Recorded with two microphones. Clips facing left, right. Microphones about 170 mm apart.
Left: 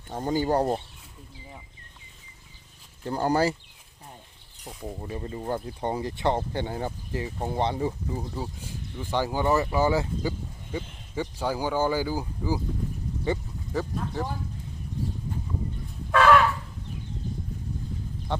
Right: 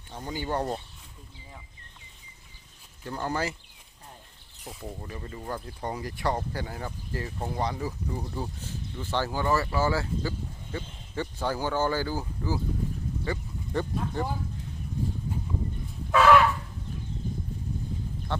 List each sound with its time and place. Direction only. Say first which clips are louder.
0.1 s speech: left 7 dB; 45° left (ahead or behind)
3.0 s speech: left 7 dB; 35° left (ahead or behind)
4.8 s speech: left 5 dB; 20° left (ahead or behind)
7.2 s speech: left 3 dB; 20° left (ahead or behind)
7.5 s speech: left 5 dB; 30° left (ahead or behind)
8.1 s speech: left 1 dB; 10° left (ahead or behind)
13.7 s speech: even; centre (ahead or behind)
16.1 s a sound: even; centre (ahead or behind)
18.3 s a sound: left 2 dB; 15° left (ahead or behind)